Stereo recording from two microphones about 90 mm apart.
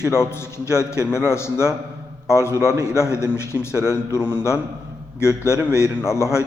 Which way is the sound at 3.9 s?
30° left (ahead or behind).